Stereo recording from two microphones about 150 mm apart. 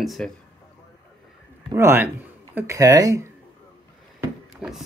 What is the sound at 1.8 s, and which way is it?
A man's voice, 15° right (ahead or behind).